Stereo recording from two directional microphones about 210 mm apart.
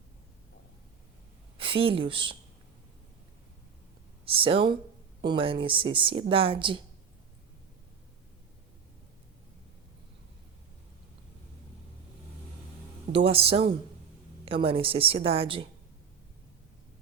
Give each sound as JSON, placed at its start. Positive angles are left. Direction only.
{"t": 1.5, "sound": "speech", "side_deg": -25}
{"t": 4.3, "sound": "speech", "side_deg": -25}
{"t": 13.1, "sound": "speech", "side_deg": -25}